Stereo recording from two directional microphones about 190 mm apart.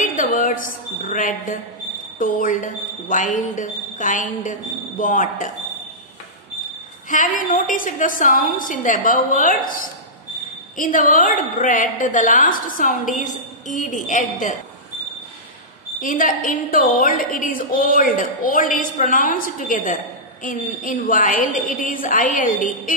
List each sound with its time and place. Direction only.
0.0 s a sound: 45° left (ahead or behind)
2.1 s a woman's voice: 45° left (ahead or behind)
7.1 s a woman's voice: 45° left (ahead or behind)
10.8 s a woman's voice: 45° left (ahead or behind)
16.0 s a woman's voice: 45° left (ahead or behind)